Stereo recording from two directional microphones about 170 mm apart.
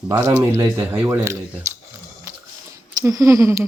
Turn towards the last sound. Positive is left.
turn(degrees=-15)  # may be behind; listen again after turning